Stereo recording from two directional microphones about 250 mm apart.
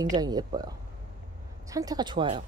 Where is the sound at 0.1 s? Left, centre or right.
Centre.